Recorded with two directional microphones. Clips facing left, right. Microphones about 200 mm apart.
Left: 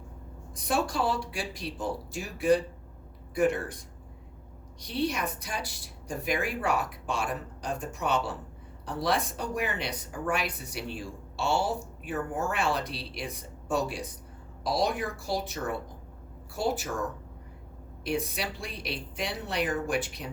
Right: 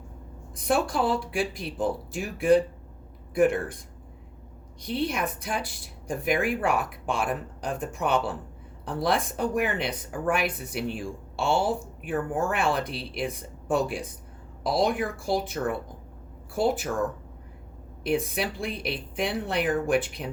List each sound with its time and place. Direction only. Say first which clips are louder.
0.6 s a woman's voice: right 3 dB; 55° right (ahead or behind)
4.8 s a woman's voice: right 2 dB; 55° right (ahead or behind)
18.0 s a woman's voice: right 5 dB; 55° right (ahead or behind)